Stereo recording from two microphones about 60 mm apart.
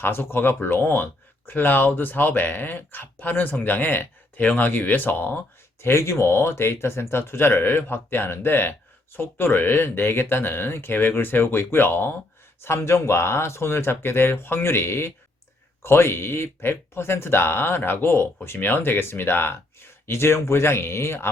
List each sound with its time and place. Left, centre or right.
0.0 s speech: left
5.8 s speech: left